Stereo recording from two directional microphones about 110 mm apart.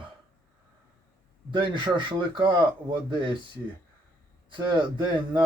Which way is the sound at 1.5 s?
50° right (ahead or behind).